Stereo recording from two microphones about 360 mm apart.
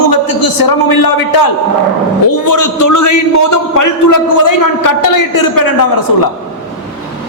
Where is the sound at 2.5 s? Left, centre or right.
Left.